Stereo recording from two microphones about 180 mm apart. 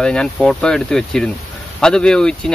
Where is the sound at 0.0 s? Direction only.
5° left (ahead or behind).